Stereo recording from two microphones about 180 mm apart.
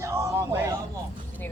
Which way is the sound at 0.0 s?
15° right (ahead or behind).